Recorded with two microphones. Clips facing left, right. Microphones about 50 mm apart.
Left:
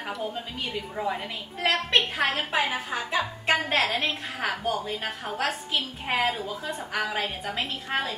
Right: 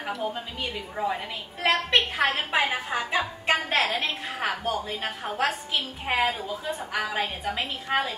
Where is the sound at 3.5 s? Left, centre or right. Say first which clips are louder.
Even; centre.